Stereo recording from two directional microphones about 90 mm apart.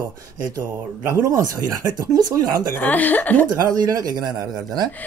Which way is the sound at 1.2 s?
35° right (ahead or behind).